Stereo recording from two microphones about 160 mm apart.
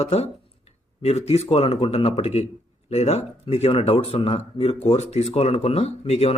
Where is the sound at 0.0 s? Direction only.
40° left (ahead or behind).